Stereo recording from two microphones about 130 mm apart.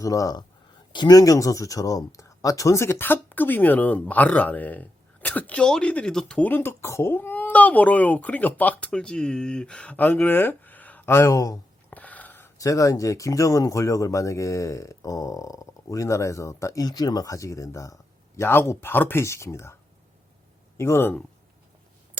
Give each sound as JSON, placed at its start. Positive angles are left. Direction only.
{"t": 0.0, "sound": "speech", "side_deg": 25}
{"t": 11.9, "sound": "a sound", "side_deg": 10}
{"t": 12.5, "sound": "speech", "side_deg": 25}
{"t": 20.7, "sound": "speech", "side_deg": 20}